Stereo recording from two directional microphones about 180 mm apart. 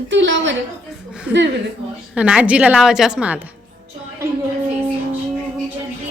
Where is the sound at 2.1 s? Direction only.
5° right (ahead or behind).